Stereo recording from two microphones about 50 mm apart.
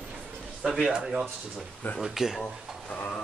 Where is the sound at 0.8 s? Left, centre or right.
Centre.